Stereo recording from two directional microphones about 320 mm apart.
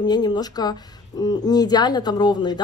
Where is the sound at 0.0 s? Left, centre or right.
Centre.